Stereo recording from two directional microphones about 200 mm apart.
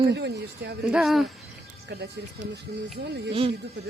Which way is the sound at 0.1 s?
60° right (ahead or behind).